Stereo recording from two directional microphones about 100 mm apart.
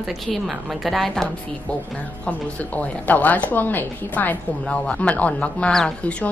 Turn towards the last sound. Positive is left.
turn(degrees=10)  # may be behind; listen again after turning